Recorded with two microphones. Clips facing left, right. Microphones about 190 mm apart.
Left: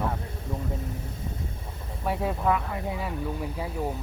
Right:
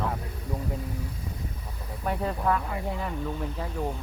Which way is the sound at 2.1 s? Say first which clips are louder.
Left 1 dB; 5° left (ahead or behind).